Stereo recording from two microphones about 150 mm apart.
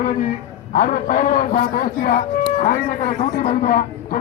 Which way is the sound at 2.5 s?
60° left (ahead or behind).